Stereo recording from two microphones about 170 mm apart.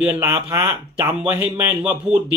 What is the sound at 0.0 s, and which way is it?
Speech, 10° right (ahead or behind).